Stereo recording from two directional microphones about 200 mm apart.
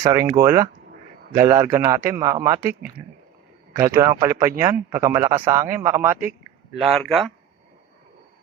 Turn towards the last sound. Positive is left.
turn(degrees=0)  # may be behind; listen again after turning